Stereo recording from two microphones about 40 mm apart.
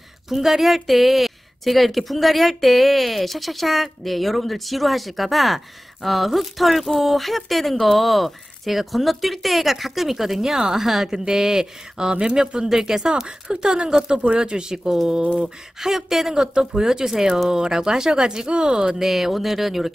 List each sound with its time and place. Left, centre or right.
0.3 s speech: centre
18.9 s speech: centre